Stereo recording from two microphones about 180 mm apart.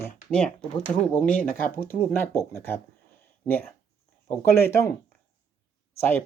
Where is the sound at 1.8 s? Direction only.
10° left (ahead or behind).